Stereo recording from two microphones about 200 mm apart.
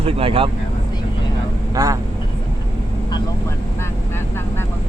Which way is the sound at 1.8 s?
15° right (ahead or behind).